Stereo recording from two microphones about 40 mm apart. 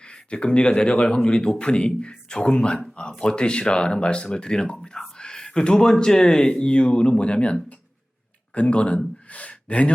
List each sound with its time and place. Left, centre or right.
0.1 s speech: left
9.3 s gasp: left